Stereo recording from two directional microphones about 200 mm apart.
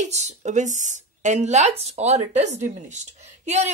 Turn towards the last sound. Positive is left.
turn(degrees=-35)  # may be behind; listen again after turning